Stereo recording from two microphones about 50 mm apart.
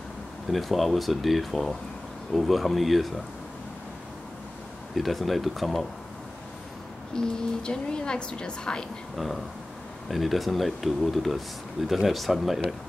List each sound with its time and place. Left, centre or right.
0.5 s speech: centre
4.9 s speech: centre
7.2 s a woman's voice: centre
9.1 s speech: centre